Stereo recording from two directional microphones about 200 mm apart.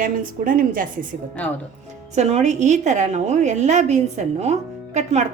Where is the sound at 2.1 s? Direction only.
35° right (ahead or behind).